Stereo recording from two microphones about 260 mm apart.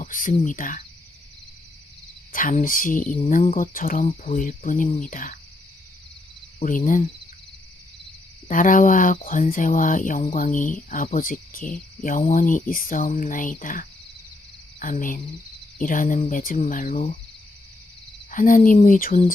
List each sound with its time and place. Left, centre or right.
0.0 s speech: left
2.3 s speech: left
6.6 s speech: left
8.4 s speech: left
18.3 s speech: left